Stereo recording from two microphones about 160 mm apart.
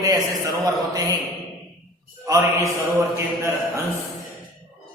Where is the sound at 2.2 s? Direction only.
20° right (ahead or behind).